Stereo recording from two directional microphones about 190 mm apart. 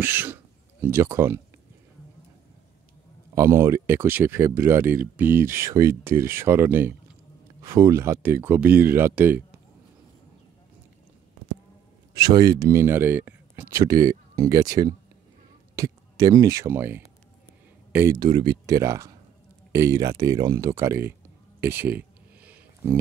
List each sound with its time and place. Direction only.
0.0 s speech: 10° right (ahead or behind)
3.3 s speech: 15° right (ahead or behind)
12.1 s speech: 20° right (ahead or behind)
21.5 s a sound: 10° right (ahead or behind)